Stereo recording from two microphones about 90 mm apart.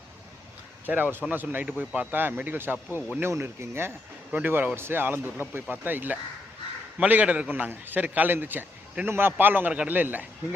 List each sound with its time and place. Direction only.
0.9 s a man's voice: 20° right (ahead or behind)